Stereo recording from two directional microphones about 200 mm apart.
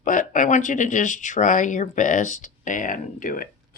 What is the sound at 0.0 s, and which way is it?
Speech, 40° left (ahead or behind).